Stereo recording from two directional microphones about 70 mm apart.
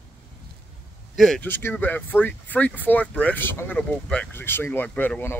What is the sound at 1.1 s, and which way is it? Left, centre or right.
Speech, centre.